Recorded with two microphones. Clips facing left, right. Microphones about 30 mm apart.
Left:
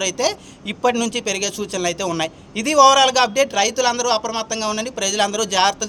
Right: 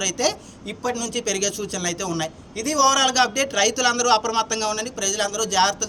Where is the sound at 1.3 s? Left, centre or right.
Left.